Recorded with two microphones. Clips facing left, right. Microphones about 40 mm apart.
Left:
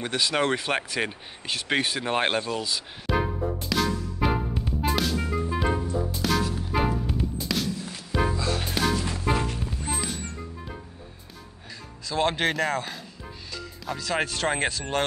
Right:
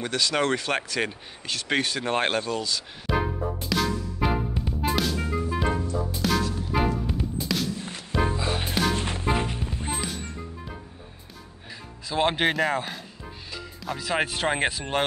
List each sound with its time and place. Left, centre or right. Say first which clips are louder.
0.0 s speech: even; centre
3.1 s music: even; centre
8.3 s music: even; right
8.6 s music: right 1 dB; centre
8.9 s music: even; right
9.2 s music: even; right
9.9 s music: even; centre
12.1 s speech: right 1 dB; centre